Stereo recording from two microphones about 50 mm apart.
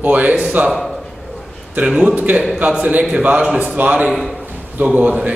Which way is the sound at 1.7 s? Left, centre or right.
Right.